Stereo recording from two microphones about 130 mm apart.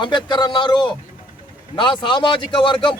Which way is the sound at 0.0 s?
35° left (ahead or behind).